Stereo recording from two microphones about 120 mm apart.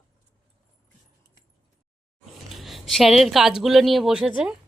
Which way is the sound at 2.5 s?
Centre (ahead or behind).